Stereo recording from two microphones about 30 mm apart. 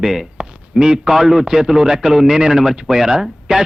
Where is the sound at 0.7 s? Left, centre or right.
Centre.